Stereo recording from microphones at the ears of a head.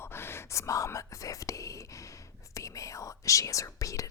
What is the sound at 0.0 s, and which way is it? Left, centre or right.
Whispering, left.